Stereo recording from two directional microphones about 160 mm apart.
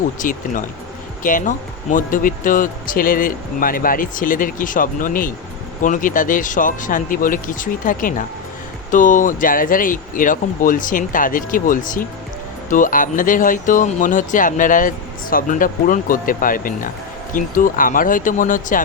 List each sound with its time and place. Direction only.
0.2 s speech: 55° left (ahead or behind)